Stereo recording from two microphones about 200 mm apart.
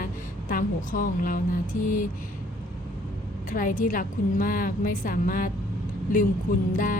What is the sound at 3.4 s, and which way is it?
A woman's voice, 40° left (ahead or behind).